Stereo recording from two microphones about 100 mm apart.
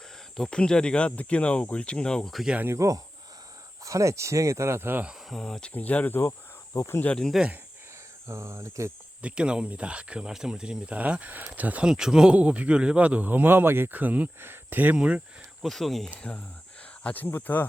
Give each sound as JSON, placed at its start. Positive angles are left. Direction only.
{"t": 0.3, "sound": "speech", "side_deg": 5}
{"t": 2.6, "sound": "speech", "side_deg": -30}
{"t": 5.3, "sound": "speech", "side_deg": 5}
{"t": 6.7, "sound": "speech", "side_deg": 25}
{"t": 7.1, "sound": "speech", "side_deg": 5}
{"t": 8.3, "sound": "speech", "side_deg": -30}
{"t": 9.2, "sound": "speech", "side_deg": -10}
{"t": 15.6, "sound": "speech", "side_deg": 0}
{"t": 16.1, "sound": "speech", "side_deg": 10}